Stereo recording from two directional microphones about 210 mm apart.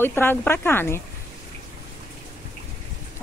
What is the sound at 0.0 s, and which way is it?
A woman's voice, 10° left (ahead or behind).